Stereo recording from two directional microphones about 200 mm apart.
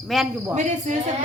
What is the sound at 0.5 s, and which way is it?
Speech, 35° right (ahead or behind).